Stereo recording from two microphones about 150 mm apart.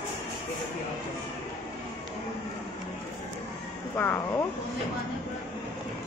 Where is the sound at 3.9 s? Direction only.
15° left (ahead or behind).